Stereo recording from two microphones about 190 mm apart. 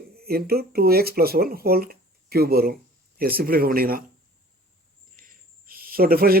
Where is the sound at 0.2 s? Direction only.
55° right (ahead or behind).